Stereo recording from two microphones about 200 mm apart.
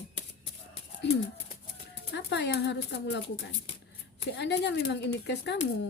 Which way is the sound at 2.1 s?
60° left (ahead or behind).